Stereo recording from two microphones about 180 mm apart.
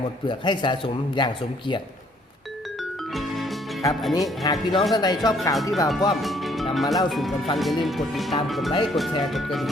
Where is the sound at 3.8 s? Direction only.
20° left (ahead or behind).